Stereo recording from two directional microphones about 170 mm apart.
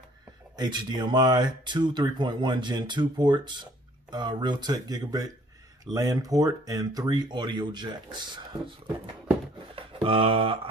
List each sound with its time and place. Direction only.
0.6 s speech: 25° right (ahead or behind)